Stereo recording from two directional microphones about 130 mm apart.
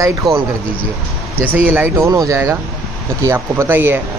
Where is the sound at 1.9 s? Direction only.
25° right (ahead or behind).